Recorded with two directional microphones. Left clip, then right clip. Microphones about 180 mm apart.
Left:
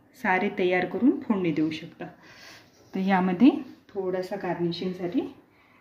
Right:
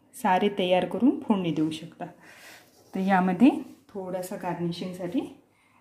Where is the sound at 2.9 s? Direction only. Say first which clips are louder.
Right 1 dB; 5° right (ahead or behind).